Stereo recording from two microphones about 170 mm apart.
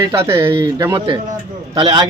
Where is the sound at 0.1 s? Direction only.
15° right (ahead or behind).